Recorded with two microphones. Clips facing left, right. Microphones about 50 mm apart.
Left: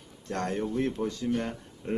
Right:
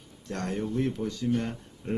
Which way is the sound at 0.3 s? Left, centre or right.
Centre.